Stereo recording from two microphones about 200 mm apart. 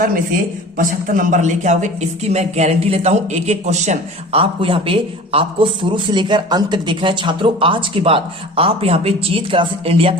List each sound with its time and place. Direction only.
0.8 s speech: 45° right (ahead or behind); by 10.2 s 30° right (ahead or behind)